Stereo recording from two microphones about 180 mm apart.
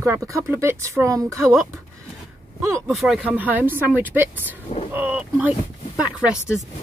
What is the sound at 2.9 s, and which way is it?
Speech, centre (ahead or behind).